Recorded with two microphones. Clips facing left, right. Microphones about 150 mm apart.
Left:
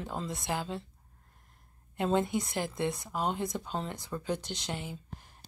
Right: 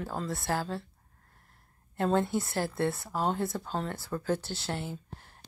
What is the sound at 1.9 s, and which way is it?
Speech, 15° left (ahead or behind).